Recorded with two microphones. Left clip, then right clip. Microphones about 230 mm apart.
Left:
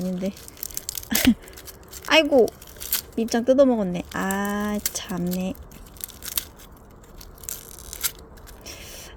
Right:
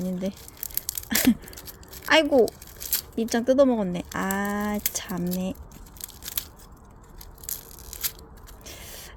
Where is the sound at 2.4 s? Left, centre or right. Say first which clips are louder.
Left 2 dB; centre.